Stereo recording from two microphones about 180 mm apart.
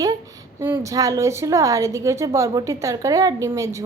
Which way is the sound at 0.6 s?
15° right (ahead or behind).